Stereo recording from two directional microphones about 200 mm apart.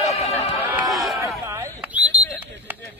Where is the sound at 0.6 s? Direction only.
10° right (ahead or behind).